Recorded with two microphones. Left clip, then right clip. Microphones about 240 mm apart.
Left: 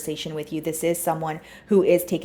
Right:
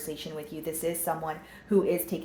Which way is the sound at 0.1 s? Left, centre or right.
Left.